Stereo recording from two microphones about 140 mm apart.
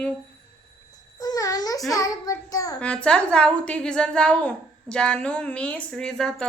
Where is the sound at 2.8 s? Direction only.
5° left (ahead or behind).